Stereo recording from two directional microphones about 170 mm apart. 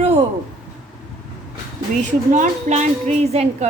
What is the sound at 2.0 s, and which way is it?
A woman's voice, 45° right (ahead or behind).